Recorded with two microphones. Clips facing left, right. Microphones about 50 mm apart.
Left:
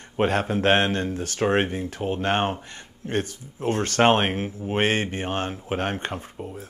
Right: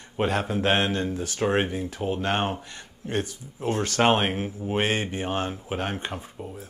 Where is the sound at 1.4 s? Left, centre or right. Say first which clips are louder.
Left 2 dB; left.